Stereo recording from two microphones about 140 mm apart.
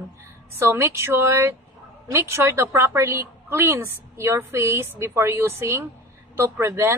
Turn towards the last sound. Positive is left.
turn(degrees=-15)  # may be behind; listen again after turning